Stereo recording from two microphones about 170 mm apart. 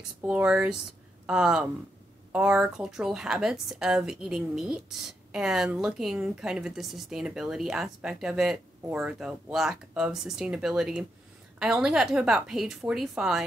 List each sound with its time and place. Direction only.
0.2 s speech: 5° right (ahead or behind)